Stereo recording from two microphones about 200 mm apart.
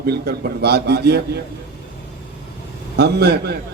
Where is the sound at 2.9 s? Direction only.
55° right (ahead or behind).